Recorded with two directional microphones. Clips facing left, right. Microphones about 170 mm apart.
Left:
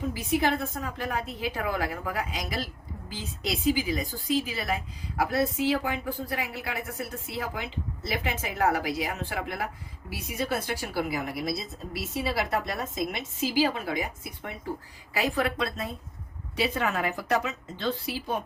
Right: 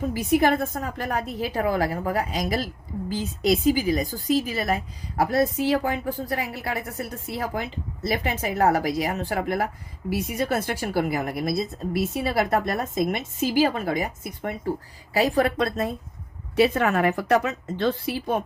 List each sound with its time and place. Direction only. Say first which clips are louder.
0.1 s a woman's voice: right 6 dB; 50° right (ahead or behind)